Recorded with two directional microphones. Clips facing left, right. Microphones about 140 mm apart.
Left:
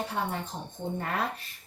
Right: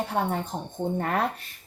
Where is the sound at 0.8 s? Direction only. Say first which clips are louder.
Right 6 dB; 65° right (ahead or behind).